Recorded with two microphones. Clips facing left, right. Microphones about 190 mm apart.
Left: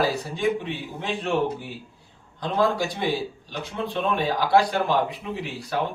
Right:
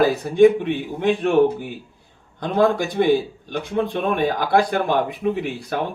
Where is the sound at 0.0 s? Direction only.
55° right (ahead or behind).